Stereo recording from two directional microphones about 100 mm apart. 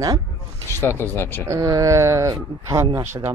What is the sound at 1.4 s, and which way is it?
Speech, 35° right (ahead or behind).